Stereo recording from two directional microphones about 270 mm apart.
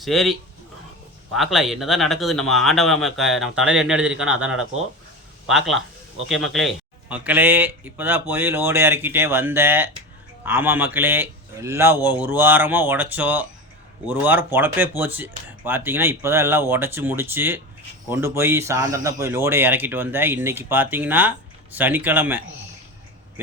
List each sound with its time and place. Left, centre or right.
0.0 s speech: centre